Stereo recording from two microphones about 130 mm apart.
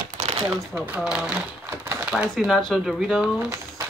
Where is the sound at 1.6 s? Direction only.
20° right (ahead or behind).